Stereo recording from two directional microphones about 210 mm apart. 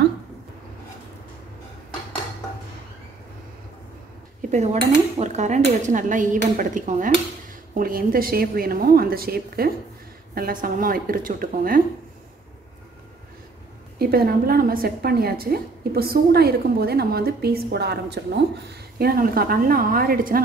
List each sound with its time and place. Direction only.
4.4 s dishes: 35° right (ahead or behind)
5.2 s a woman's voice: 35° right (ahead or behind)
13.9 s a woman's voice: 45° right (ahead or behind)